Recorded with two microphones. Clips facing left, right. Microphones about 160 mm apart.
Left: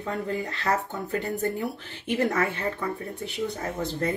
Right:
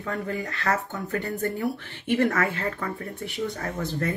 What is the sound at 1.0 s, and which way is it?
Speech, 25° left (ahead or behind).